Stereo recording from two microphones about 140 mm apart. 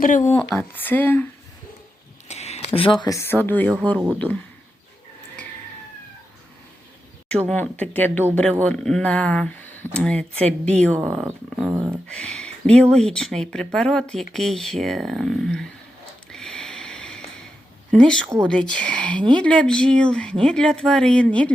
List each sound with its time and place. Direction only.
0.0 s speech: 70° left (ahead or behind)
0.7 s speech: 15° left (ahead or behind)
2.2 s a sound: 50° left (ahead or behind)
2.7 s speech: 35° left (ahead or behind)
3.2 s speech: 15° left (ahead or behind)
3.9 s speech: 10° right (ahead or behind)
7.3 s speech: 5° left (ahead or behind)
10.9 s speech: 15° right (ahead or behind)
12.0 s speech: 5° left (ahead or behind)
16.3 s a sound: 5° left (ahead or behind)
17.9 s speech: 5° left (ahead or behind)